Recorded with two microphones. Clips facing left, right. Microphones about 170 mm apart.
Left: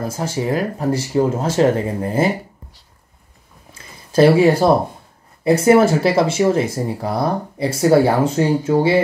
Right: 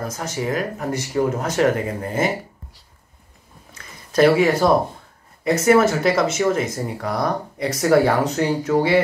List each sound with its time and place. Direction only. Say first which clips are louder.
0.0 s speech: left 4 dB; 30° left (ahead or behind)
3.7 s a sound: left 3 dB; 30° left (ahead or behind)
5.4 s speech: left 3 dB; 30° left (ahead or behind)